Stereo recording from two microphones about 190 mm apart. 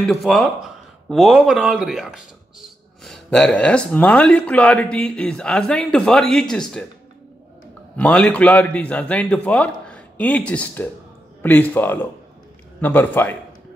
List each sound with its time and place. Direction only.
0.0 s speech: centre (ahead or behind)
8.0 s a man's voice: 5° left (ahead or behind)